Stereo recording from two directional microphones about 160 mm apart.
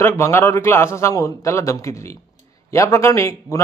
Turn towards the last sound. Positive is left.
turn(degrees=20)  # may be behind; listen again after turning